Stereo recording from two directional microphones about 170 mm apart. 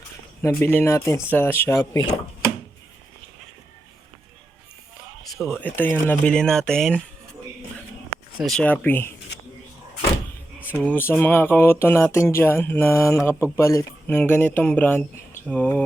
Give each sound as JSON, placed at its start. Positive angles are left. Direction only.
{"t": 0.4, "sound": "speech", "side_deg": 10}
{"t": 5.3, "sound": "speech", "side_deg": 15}
{"t": 8.4, "sound": "speech", "side_deg": 5}
{"t": 10.8, "sound": "speech", "side_deg": 10}